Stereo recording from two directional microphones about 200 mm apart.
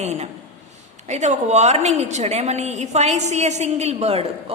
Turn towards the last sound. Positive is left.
turn(degrees=-30)  # may be behind; listen again after turning